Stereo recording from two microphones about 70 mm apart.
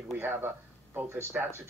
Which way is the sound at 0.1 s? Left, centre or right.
Right.